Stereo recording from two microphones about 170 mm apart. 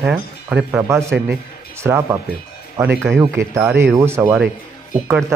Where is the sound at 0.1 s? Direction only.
10° right (ahead or behind).